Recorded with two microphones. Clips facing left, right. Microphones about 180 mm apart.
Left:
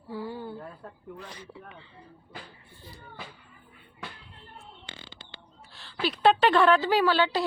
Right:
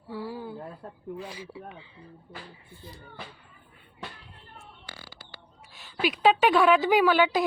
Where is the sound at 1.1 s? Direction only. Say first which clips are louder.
Right 7 dB; 5° right (ahead or behind).